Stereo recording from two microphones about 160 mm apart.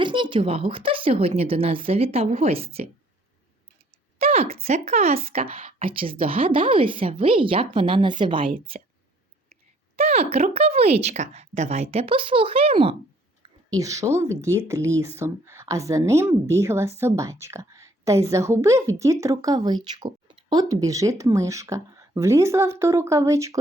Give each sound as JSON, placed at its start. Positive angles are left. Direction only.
{"t": 0.0, "sound": "a woman's voice", "side_deg": -30}
{"t": 4.2, "sound": "a woman's voice", "side_deg": -40}
{"t": 9.9, "sound": "a woman's voice", "side_deg": -40}
{"t": 13.4, "sound": "a woman's voice", "side_deg": -20}